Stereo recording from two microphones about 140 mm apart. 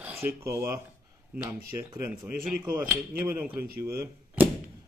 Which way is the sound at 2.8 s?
10° right (ahead or behind).